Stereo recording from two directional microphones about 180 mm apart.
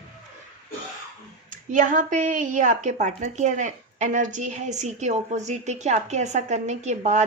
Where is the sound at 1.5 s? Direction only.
45° right (ahead or behind).